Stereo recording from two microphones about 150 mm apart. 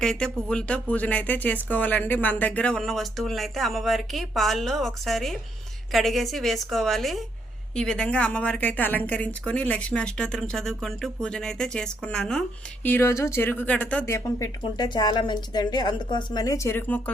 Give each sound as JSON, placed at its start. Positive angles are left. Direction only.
{"t": 0.0, "sound": "a woman's voice", "side_deg": 5}
{"t": 14.6, "sound": "a woman's voice", "side_deg": 30}